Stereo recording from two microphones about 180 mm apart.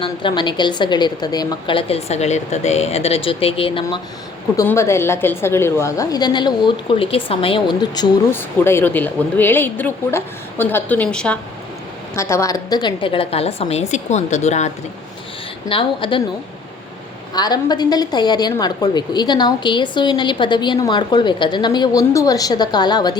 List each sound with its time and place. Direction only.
0.0 s a woman's voice: 25° left (ahead or behind)
4.5 s a woman's voice: 15° left (ahead or behind)
8.3 s speech: 10° left (ahead or behind)
12.1 s a woman's voice: 15° left (ahead or behind); by 14.7 s 40° left (ahead or behind)
15.7 s a woman's voice: 30° left (ahead or behind)
17.3 s a woman's voice: 20° left (ahead or behind)